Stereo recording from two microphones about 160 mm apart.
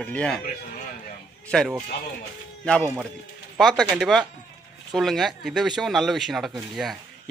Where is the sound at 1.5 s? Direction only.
5° left (ahead or behind).